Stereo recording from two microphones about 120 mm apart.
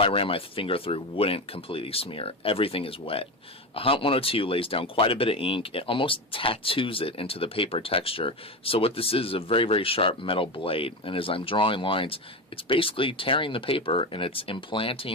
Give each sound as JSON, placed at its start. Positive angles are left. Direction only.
{"t": 0.0, "sound": "speech", "side_deg": 50}